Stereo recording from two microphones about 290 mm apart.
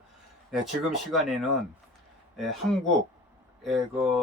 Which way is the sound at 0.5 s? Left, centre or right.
Centre.